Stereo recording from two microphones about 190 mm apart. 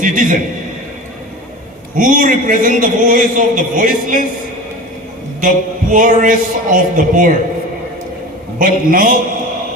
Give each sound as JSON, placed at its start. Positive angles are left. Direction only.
{"t": 0.0, "sound": "a man's voice", "side_deg": -45}
{"t": 2.0, "sound": "a man's voice", "side_deg": -45}
{"t": 5.4, "sound": "a man's voice", "side_deg": -45}
{"t": 8.5, "sound": "a man's voice", "side_deg": -45}